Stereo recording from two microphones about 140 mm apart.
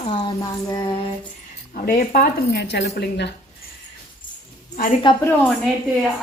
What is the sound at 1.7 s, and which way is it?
Speech, 90° left.